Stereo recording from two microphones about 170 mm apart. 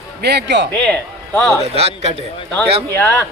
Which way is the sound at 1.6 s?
40° right (ahead or behind).